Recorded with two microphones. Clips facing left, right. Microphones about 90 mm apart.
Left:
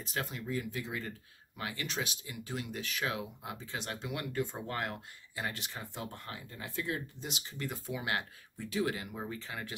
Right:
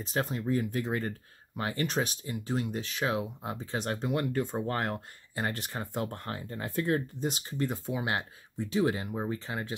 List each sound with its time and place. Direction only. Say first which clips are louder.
0.0 s speech: right 7 dB; 35° right (ahead or behind)